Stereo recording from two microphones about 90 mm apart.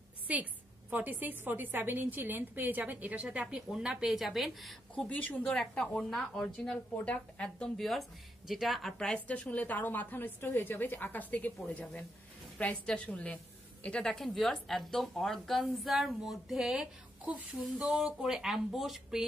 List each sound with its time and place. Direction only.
0.3 s a woman's voice: 15° right (ahead or behind); by 4.7 s centre (ahead or behind)
4.9 s speech: 15° left (ahead or behind)
5.6 s a woman's voice: 5° left (ahead or behind)
17.2 s speech: 15° right (ahead or behind)
17.6 s a woman's voice: centre (ahead or behind)